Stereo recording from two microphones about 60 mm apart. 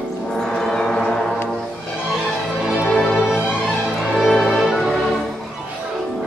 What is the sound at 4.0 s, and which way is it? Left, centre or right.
Music, centre.